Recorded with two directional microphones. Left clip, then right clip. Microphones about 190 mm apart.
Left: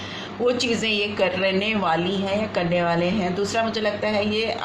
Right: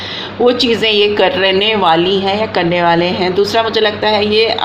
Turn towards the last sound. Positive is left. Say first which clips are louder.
# right 11 dB
turn(degrees=-50)  # may be behind; listen again after turning